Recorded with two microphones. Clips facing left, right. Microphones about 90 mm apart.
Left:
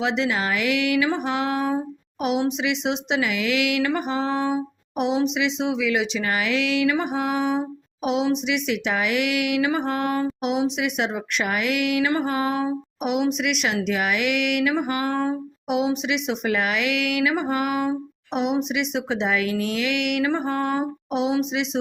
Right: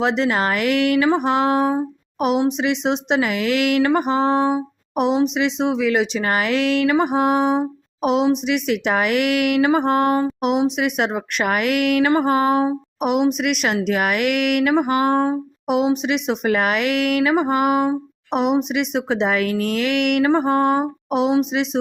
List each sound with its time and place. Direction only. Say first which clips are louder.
0.0 s speech: right 4 dB; 45° right (ahead or behind)
2.5 s a sound: right 4 dB; 40° right (ahead or behind)
4.9 s speech: right 4 dB; 45° right (ahead or behind)
7.0 s a sound: right 6 dB; 40° right (ahead or behind)
8.0 s speech: right 5 dB; 45° right (ahead or behind)
10.8 s speech: right 4 dB; 50° right (ahead or behind)
12.1 s speech: right 6 dB; 40° right (ahead or behind)
15.6 s speech: right 4 dB; 45° right (ahead or behind)
21.1 s speech: right 5 dB; 50° right (ahead or behind)